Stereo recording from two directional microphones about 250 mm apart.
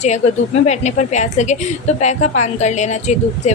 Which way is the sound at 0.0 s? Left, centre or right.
Left.